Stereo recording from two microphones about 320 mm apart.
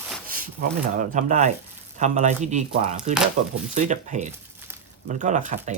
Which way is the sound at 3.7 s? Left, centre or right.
Right.